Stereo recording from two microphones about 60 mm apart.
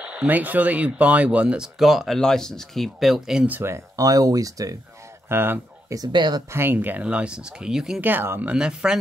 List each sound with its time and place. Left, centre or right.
0.0 s a sound: centre
0.3 s speech: right
1.8 s speech: centre
3.9 s speech: right
5.3 s speech: right
5.9 s speech: right
6.5 s speech: right
7.0 s speech: centre
8.0 s speech: right
8.5 s speech: centre